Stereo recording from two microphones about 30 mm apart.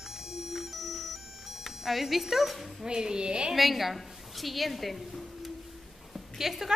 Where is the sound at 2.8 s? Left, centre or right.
Right.